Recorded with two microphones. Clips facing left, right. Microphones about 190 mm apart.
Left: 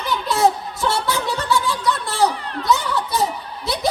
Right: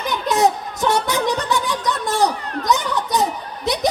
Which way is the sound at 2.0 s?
20° right (ahead or behind).